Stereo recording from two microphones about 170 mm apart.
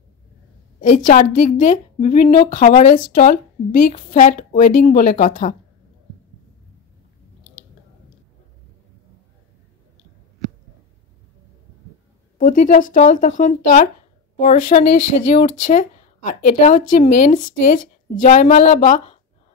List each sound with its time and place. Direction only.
0.7 s speech: 50° left (ahead or behind)
12.4 s speech: 50° left (ahead or behind)